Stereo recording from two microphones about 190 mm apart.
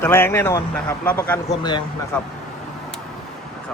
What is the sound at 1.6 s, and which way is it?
Speech, 20° left (ahead or behind).